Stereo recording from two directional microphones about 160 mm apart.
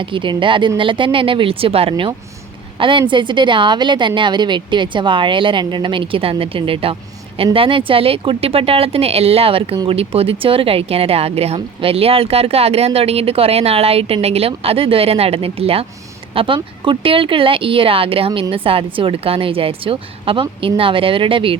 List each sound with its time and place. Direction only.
0.0 s a woman's voice: 30° right (ahead or behind)